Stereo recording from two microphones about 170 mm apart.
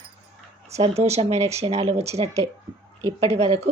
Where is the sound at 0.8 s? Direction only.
40° right (ahead or behind).